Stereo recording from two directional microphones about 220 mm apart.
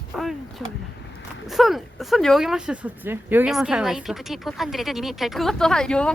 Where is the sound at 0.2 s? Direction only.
Centre (ahead or behind).